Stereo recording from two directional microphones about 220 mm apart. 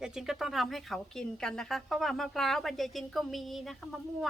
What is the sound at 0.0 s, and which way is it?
A woman's voice, 5° right (ahead or behind).